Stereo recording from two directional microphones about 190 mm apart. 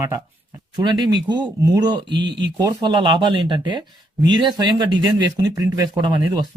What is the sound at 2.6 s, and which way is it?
Speech, 25° right (ahead or behind).